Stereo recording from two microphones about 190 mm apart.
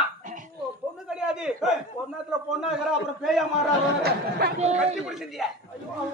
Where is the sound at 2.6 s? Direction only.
5° right (ahead or behind).